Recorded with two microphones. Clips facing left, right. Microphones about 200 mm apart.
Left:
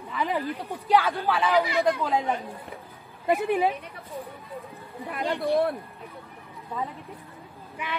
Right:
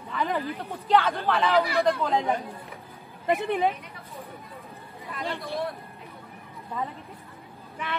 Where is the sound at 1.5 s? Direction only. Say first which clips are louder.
Even; 15° left (ahead or behind).